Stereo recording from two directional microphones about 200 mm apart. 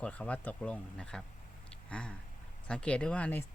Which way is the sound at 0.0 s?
5° left (ahead or behind).